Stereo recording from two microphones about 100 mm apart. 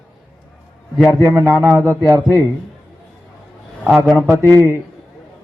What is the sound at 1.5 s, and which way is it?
Speech, 10° right (ahead or behind).